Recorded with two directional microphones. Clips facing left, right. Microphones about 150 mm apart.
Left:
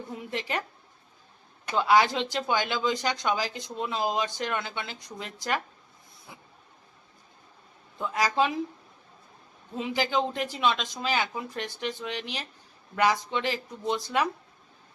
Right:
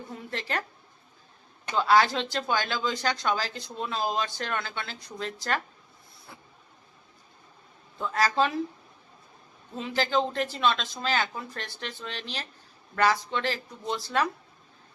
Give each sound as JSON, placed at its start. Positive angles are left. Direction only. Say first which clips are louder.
{"t": 0.1, "sound": "speech", "louder": "left 1 dB", "side_deg": 15}
{"t": 1.7, "sound": "speech", "louder": "even", "side_deg": 15}
{"t": 7.9, "sound": "speech", "louder": "even", "side_deg": 15}
{"t": 9.7, "sound": "speech", "louder": "even", "side_deg": 15}